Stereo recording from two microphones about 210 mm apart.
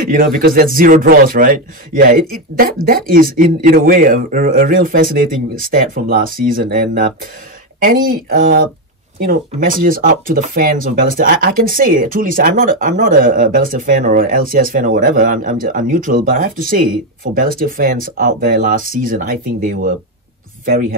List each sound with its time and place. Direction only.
0.0 s speech: 45° right (ahead or behind)